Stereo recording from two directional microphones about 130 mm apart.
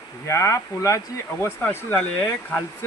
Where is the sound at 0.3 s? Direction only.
20° left (ahead or behind).